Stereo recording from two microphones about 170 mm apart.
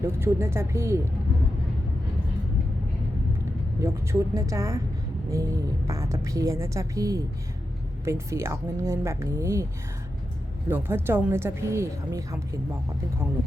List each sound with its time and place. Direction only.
0.0 s speech: 15° right (ahead or behind)
3.8 s a woman's voice: 15° right (ahead or behind)
10.7 s speech: 10° right (ahead or behind)